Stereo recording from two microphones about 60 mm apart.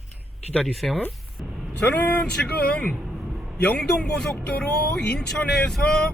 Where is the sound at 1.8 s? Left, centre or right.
Left.